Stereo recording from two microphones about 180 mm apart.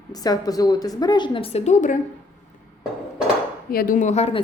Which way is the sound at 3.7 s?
50° left (ahead or behind).